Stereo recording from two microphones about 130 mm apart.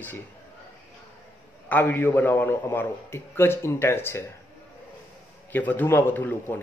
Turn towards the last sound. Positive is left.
turn(degrees=15)  # may be behind; listen again after turning